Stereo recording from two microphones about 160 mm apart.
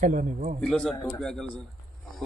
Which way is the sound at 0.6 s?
5° left (ahead or behind).